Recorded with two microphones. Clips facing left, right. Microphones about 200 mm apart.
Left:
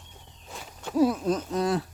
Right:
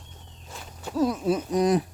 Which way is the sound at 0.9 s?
5° left (ahead or behind).